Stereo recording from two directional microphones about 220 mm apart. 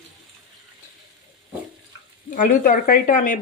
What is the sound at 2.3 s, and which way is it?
A woman's voice, 40° left (ahead or behind).